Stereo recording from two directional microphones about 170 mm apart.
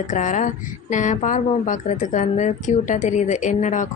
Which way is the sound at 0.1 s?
45° left (ahead or behind).